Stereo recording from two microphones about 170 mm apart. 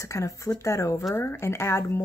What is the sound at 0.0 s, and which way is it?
Speech, 15° left (ahead or behind).